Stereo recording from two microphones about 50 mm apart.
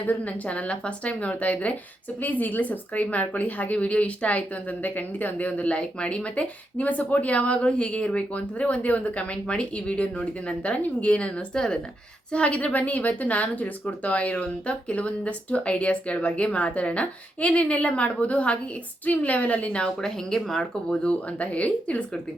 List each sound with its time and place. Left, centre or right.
0.0 s a woman's voice: left
19.8 s speech: centre
21.0 s a woman's voice: left